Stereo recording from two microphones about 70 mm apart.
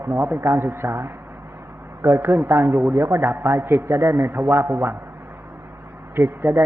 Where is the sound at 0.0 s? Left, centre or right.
Right.